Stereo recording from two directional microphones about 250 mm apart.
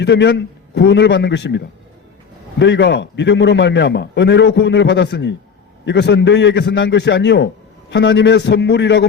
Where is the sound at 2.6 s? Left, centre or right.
Left.